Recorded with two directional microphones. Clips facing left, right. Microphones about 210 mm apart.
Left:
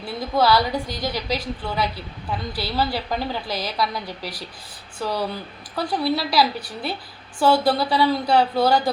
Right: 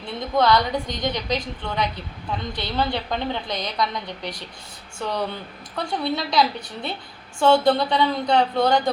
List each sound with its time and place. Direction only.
0.0 s a woman's voice: 5° left (ahead or behind)